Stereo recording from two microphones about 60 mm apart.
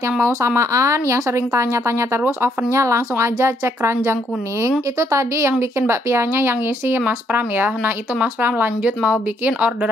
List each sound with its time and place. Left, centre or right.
0.2 s speech: right
2.2 s a woman's voice: right
2.8 s a woman's voice: right
8.8 s speech: right